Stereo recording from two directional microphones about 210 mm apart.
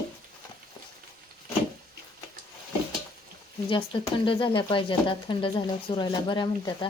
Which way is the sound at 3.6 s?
25° left (ahead or behind).